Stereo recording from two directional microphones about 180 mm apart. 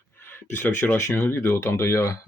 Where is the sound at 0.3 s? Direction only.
10° left (ahead or behind).